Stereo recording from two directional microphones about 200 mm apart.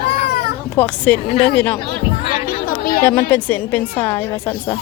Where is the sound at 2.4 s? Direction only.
45° left (ahead or behind).